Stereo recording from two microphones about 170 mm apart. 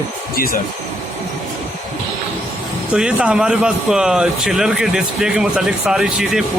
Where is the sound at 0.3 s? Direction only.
60° left (ahead or behind).